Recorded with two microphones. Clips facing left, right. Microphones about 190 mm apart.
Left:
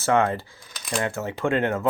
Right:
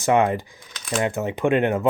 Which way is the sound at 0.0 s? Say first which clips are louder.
Right 2 dB; 15° right (ahead or behind).